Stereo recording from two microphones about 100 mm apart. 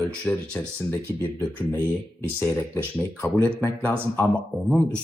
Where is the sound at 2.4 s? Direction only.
25° left (ahead or behind).